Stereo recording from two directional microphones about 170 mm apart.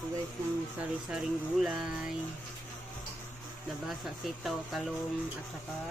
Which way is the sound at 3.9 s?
Centre (ahead or behind).